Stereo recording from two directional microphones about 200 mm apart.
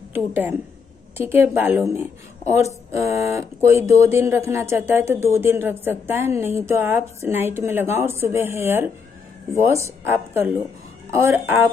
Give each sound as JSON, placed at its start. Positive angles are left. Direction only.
{"t": 0.1, "sound": "speech", "side_deg": -10}